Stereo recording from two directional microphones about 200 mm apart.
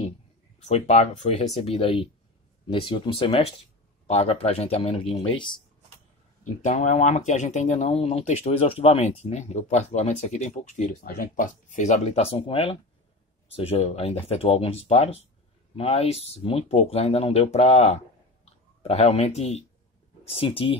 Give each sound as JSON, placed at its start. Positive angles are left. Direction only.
{"t": 0.7, "sound": "speech", "side_deg": 35}